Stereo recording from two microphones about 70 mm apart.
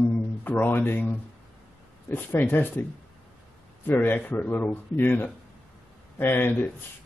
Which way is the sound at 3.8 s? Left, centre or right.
Left.